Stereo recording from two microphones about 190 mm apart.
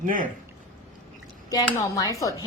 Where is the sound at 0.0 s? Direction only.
45° right (ahead or behind).